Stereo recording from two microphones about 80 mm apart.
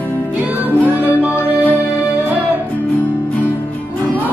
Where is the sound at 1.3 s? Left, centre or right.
Left.